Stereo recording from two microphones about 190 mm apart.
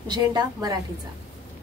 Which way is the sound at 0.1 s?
20° right (ahead or behind).